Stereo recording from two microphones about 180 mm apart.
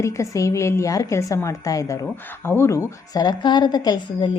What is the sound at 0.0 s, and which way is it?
Speech, 15° left (ahead or behind).